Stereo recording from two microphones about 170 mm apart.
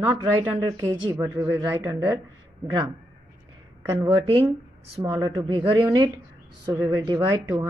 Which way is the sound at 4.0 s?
30° right (ahead or behind).